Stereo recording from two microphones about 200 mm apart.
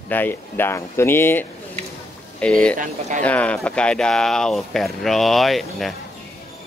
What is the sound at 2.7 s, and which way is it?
Speech, 40° right (ahead or behind).